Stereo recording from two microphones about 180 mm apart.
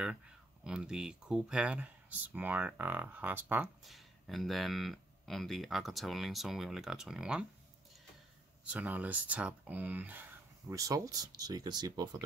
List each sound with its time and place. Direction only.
0.7 s speech: 5° right (ahead or behind)
8.6 s speech: 5° right (ahead or behind); by 12.2 s 25° right (ahead or behind)